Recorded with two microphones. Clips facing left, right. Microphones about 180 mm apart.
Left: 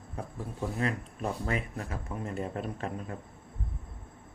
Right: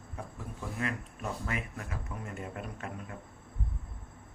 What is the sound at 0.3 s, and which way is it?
Speech, 30° left (ahead or behind).